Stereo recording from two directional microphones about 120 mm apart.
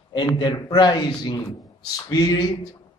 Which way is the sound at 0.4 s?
35° left (ahead or behind).